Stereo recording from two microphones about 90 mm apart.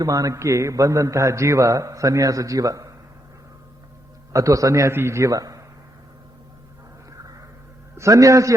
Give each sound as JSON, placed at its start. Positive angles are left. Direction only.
{"t": 0.0, "sound": "a man's voice", "side_deg": -40}
{"t": 4.3, "sound": "a man's voice", "side_deg": -40}
{"t": 4.9, "sound": "a man's voice", "side_deg": -30}
{"t": 7.9, "sound": "a man's voice", "side_deg": -35}